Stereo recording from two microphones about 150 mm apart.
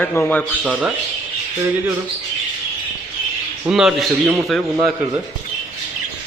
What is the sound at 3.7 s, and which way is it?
Speech, 5° right (ahead or behind).